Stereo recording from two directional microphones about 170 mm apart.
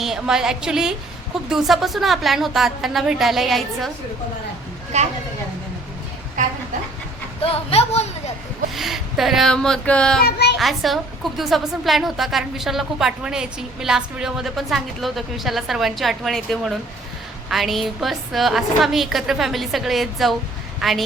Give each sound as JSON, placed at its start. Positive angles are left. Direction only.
{"t": 0.0, "sound": "a woman's voice", "side_deg": 0}
{"t": 4.9, "sound": "speech", "side_deg": -40}
{"t": 6.4, "sound": "a woman's voice", "side_deg": -50}
{"t": 7.4, "sound": "a sound", "side_deg": 35}
{"t": 8.7, "sound": "speech", "side_deg": 0}
{"t": 10.2, "sound": "a child's voice", "side_deg": 75}
{"t": 10.6, "sound": "a woman's voice", "side_deg": 0}